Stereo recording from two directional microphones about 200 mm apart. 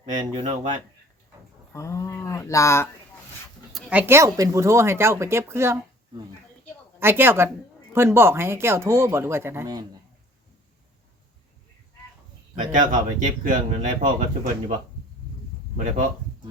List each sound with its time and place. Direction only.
0.3 s speech: 35° right (ahead or behind)
1.7 s speech: 15° left (ahead or behind)
3.7 s speech: 5° right (ahead or behind)
7.0 s speech: 10° right (ahead or behind)
12.5 s speech: 40° right (ahead or behind)